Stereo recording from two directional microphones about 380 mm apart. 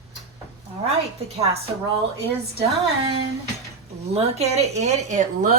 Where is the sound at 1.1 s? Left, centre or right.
Centre.